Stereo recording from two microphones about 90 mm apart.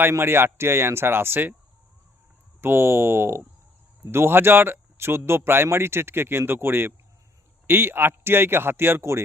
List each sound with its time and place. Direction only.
0.0 s speech: 25° right (ahead or behind)
2.6 s speech: 25° right (ahead or behind)